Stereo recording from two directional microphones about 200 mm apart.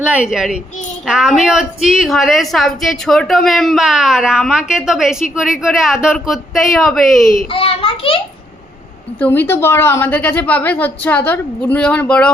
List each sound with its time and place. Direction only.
0.0 s a child's voice: 5° right (ahead or behind)
7.5 s a child's voice: 30° left (ahead or behind)
9.2 s a woman's voice: 10° left (ahead or behind)